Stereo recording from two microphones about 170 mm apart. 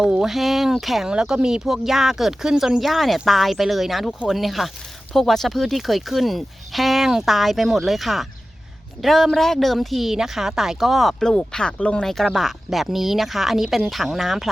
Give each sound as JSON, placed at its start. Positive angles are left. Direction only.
{"t": 0.0, "sound": "speech", "side_deg": 0}